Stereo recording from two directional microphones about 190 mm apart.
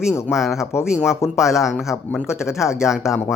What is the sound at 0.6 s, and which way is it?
Speech, 15° left (ahead or behind).